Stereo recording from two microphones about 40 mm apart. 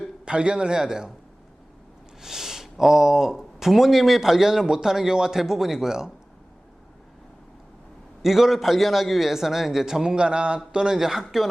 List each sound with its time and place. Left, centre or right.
0.3 s a man's voice: right
2.2 s speech: centre
8.2 s a man's voice: centre
10.9 s speech: centre